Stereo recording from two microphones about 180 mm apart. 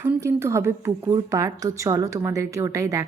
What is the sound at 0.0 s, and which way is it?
Speech, 15° right (ahead or behind).